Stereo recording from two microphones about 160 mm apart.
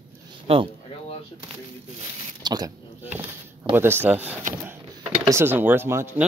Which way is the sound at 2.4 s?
25° right (ahead or behind).